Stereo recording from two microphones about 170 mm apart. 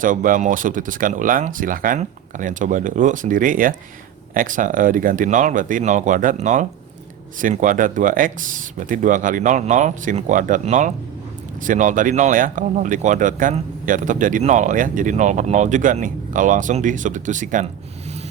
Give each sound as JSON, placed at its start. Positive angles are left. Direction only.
{"t": 0.0, "sound": "speech", "side_deg": -50}